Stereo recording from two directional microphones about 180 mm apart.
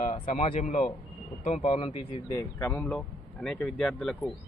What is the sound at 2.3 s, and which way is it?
Speech, 15° left (ahead or behind).